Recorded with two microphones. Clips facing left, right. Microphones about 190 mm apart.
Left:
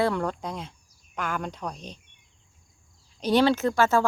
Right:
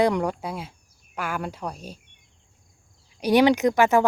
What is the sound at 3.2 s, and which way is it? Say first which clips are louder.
Speech: right 3 dB; 15° right (ahead or behind).